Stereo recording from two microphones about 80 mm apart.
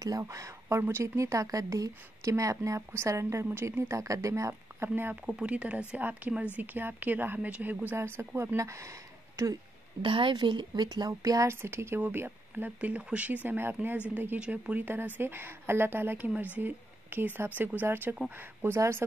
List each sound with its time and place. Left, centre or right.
0.0 s speech: right
5.2 s speech: centre; by 8.5 s right
8.5 s speech: right
10.0 s a woman's voice: right
11.4 s speech: right